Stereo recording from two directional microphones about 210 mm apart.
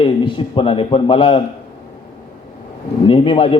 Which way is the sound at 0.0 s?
25° left (ahead or behind).